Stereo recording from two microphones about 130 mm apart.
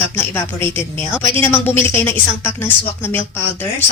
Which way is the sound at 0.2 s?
15° left (ahead or behind).